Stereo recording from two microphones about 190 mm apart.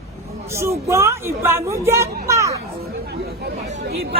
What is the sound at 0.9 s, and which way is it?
A man's voice, 15° right (ahead or behind).